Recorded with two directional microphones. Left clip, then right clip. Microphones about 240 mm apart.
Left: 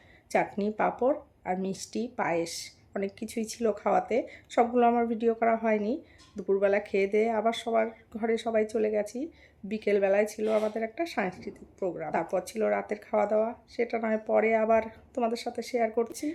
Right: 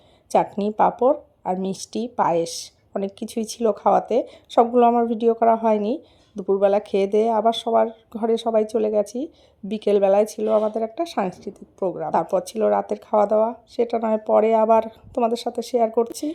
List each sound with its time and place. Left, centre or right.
0.3 s speech: right
10.4 s speech: centre
10.9 s speech: right